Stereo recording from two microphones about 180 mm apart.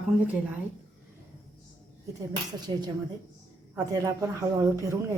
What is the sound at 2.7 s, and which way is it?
Speech, 25° right (ahead or behind).